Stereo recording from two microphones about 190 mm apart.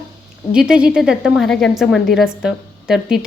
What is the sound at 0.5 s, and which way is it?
A woman's voice, 5° right (ahead or behind).